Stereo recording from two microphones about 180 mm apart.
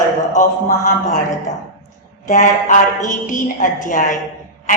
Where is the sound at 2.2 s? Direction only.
45° left (ahead or behind).